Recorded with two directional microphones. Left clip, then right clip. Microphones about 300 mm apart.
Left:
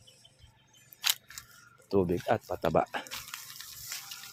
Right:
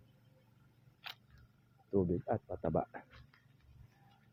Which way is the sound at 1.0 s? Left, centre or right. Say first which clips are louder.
Left 19 dB; centre.